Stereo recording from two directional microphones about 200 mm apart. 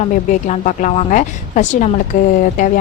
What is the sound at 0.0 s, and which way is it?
A woman's voice, 35° left (ahead or behind).